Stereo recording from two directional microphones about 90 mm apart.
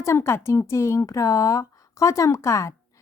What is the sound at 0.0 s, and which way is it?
Speech, 30° left (ahead or behind).